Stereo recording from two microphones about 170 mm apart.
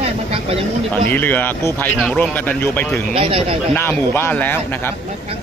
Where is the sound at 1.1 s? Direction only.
10° left (ahead or behind).